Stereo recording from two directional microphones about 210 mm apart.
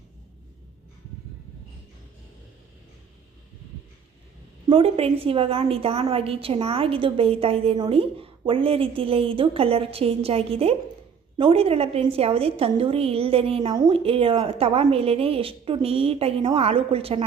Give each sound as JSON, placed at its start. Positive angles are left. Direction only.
{"t": 4.7, "sound": "a woman's voice", "side_deg": -25}